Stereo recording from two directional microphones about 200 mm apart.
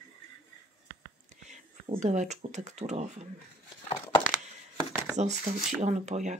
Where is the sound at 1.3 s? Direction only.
35° right (ahead or behind).